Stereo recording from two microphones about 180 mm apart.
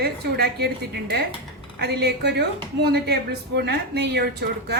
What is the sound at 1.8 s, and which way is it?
A woman's voice, 65° right (ahead or behind).